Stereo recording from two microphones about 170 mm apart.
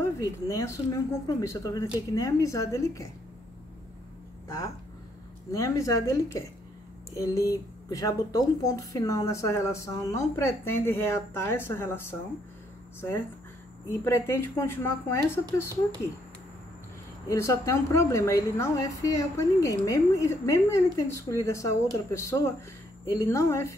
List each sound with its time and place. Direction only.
0.2 s speech: 20° left (ahead or behind)
4.5 s speech: 20° left (ahead or behind)
13.8 s speech: 15° left (ahead or behind)
17.3 s speech: 15° left (ahead or behind)